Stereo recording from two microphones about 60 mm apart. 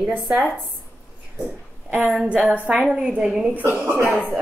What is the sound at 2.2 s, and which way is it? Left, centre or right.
Speech, right.